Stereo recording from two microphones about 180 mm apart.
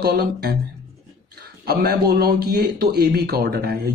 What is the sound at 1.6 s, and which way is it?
Speech, 60° right (ahead or behind).